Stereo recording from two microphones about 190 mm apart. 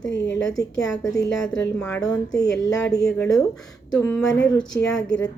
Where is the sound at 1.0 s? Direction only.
20° left (ahead or behind).